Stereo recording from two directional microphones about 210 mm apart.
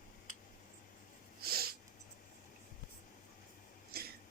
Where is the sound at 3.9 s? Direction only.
45° right (ahead or behind).